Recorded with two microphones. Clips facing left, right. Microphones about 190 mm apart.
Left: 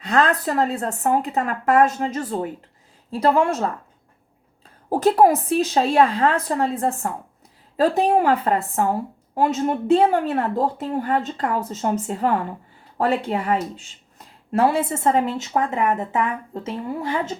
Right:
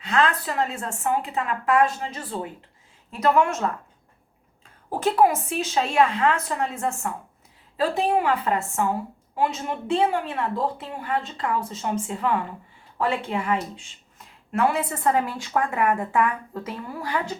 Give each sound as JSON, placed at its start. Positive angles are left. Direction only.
{"t": 0.0, "sound": "a woman's voice", "side_deg": 40}
{"t": 3.1, "sound": "a woman's voice", "side_deg": 30}
{"t": 4.9, "sound": "a woman's voice", "side_deg": 40}